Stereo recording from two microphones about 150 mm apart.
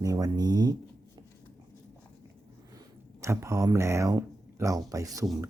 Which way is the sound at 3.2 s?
20° right (ahead or behind).